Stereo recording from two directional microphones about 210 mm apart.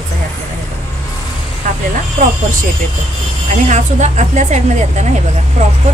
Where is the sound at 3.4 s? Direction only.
35° right (ahead or behind).